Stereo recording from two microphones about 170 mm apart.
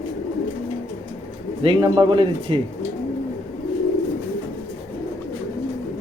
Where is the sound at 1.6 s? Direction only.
30° right (ahead or behind).